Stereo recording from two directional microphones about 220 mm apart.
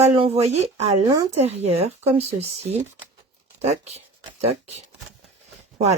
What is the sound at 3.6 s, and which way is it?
Speech, 30° right (ahead or behind).